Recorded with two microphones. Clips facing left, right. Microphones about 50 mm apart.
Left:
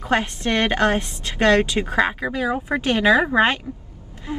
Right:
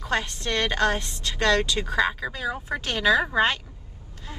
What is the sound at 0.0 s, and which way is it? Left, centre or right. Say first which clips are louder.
A woman's voice: left 6 dB; left.